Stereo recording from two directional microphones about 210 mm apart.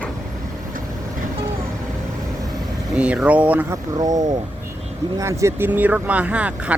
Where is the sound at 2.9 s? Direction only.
5° right (ahead or behind).